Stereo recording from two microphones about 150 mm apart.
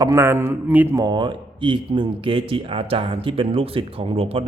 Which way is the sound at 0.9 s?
30° right (ahead or behind).